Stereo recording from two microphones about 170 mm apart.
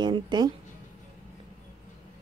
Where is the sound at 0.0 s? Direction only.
25° right (ahead or behind).